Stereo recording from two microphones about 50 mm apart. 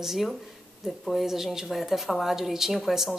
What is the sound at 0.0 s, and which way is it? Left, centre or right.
A woman's voice, centre.